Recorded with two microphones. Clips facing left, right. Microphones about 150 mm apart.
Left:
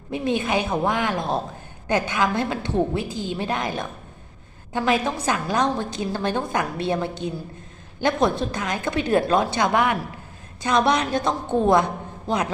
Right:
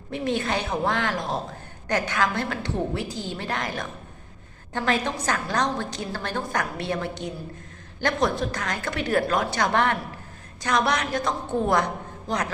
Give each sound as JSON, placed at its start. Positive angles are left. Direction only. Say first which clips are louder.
{"t": 0.1, "sound": "a woman's voice", "louder": "left 3 dB", "side_deg": 15}
{"t": 9.7, "sound": "a woman's voice", "louder": "left 1 dB", "side_deg": 10}
{"t": 10.6, "sound": "a woman's voice", "louder": "left 4 dB", "side_deg": 25}